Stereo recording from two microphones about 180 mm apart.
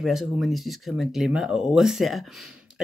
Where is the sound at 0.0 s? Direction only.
Centre (ahead or behind).